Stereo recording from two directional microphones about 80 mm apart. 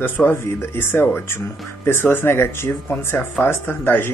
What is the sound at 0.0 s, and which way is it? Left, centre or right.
Speech, left.